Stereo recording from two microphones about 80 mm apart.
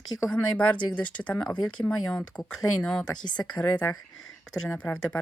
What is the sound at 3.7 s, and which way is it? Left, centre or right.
Speech, left.